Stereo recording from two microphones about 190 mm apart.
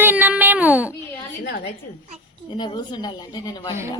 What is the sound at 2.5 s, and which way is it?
A woman's voice, 25° left (ahead or behind).